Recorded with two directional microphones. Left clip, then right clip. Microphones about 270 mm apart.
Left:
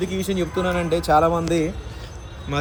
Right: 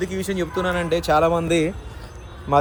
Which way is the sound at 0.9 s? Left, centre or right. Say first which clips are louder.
Left 2 dB; right.